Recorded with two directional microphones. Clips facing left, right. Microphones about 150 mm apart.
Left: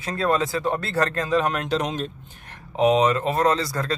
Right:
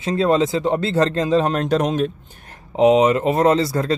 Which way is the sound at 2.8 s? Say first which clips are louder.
Right 5 dB; 20° right (ahead or behind).